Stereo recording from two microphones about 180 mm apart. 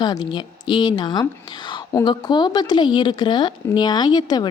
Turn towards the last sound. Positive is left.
turn(degrees=25)  # may be behind; listen again after turning